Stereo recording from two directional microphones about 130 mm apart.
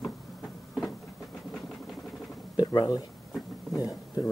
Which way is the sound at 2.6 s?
35° left (ahead or behind).